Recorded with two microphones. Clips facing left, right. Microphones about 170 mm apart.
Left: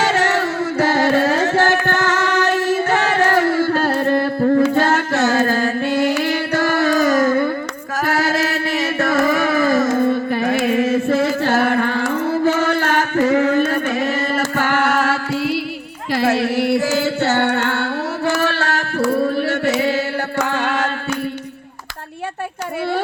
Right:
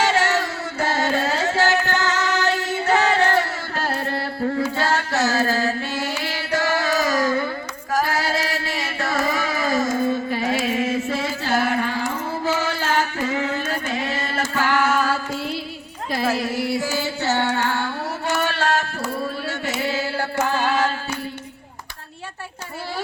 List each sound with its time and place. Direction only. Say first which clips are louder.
0.1 s music: left 3 dB; 55° left (ahead or behind)
8.0 s chant: left 5 dB; 50° left (ahead or behind)
9.0 s music: left 6 dB; 55° left (ahead or behind); by 15.6 s 90° left
16.1 s chant: left 6 dB; 70° left (ahead or behind)